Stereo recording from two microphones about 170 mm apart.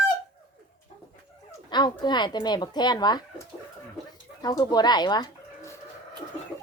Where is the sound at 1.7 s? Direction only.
25° left (ahead or behind).